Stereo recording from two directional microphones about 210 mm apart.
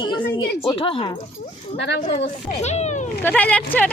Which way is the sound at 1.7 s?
55° left (ahead or behind).